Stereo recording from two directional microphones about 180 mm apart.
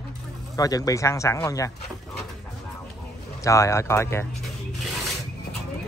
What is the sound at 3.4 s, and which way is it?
Speech, 15° left (ahead or behind).